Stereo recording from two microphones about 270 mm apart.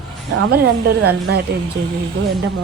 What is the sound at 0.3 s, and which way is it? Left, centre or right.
A woman's voice, right.